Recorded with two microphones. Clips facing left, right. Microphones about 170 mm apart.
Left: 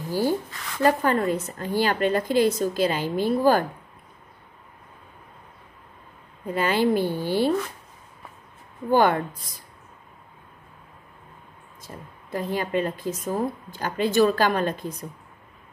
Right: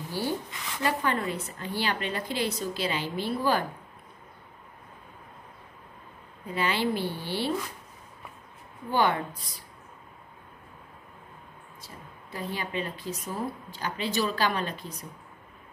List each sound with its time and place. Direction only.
0.1 s a sound: 40° left (ahead or behind)
0.8 s speech: 40° left (ahead or behind)
6.4 s speech: 45° left (ahead or behind)
8.9 s speech: 50° left (ahead or behind)
11.8 s speech: 50° left (ahead or behind)